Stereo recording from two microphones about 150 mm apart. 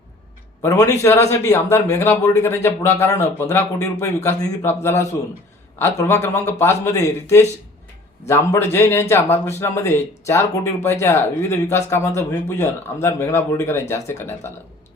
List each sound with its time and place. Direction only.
0.6 s a man's voice: 20° left (ahead or behind)